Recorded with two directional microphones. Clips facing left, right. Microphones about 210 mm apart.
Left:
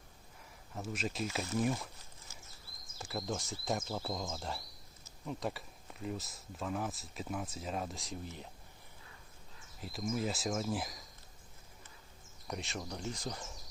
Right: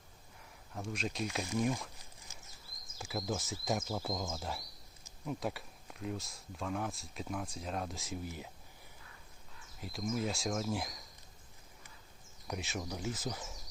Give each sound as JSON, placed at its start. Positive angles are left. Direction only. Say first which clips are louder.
{"t": 0.7, "sound": "speech", "louder": "even", "side_deg": 5}
{"t": 2.3, "sound": "a sound", "louder": "left 2 dB", "side_deg": -15}
{"t": 3.0, "sound": "speech", "louder": "right 1 dB", "side_deg": 0}
{"t": 9.8, "sound": "speech", "louder": "even", "side_deg": 0}
{"t": 12.5, "sound": "speech", "louder": "right 1 dB", "side_deg": 0}